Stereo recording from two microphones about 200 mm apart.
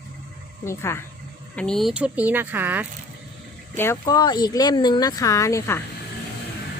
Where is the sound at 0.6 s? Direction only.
15° left (ahead or behind); by 2.8 s 10° right (ahead or behind).